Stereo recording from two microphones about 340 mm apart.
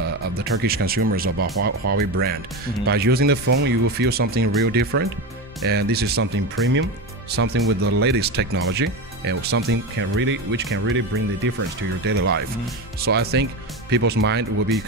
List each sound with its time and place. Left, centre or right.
0.4 s speech: right